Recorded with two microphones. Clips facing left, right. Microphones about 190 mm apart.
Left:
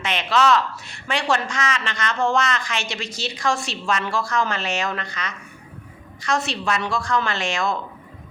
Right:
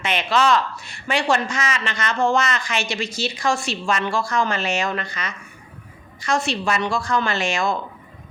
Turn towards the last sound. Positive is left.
turn(degrees=0)  # may be behind; listen again after turning